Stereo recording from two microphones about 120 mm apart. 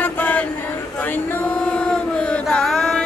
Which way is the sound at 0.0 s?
15° left (ahead or behind).